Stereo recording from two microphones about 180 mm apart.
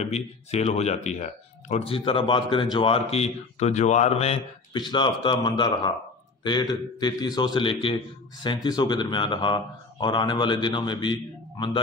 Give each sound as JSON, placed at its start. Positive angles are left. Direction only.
{"t": 0.0, "sound": "a man's voice", "side_deg": 35}